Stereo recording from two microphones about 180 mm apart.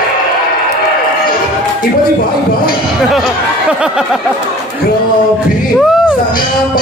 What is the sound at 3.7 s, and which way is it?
Snicker, 5° right (ahead or behind).